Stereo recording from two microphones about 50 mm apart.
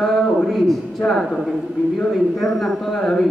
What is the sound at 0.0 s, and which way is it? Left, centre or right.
Speech, centre.